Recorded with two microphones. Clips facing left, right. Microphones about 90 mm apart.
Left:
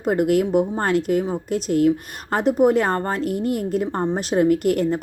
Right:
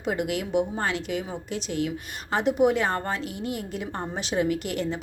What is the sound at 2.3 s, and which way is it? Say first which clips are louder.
A woman's voice: left 5 dB; 40° left (ahead or behind).